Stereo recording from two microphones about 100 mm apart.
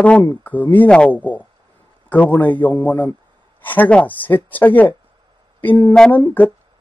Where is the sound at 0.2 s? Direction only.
20° left (ahead or behind).